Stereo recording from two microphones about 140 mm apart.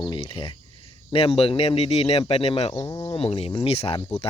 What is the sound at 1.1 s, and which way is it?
Speech, 40° left (ahead or behind).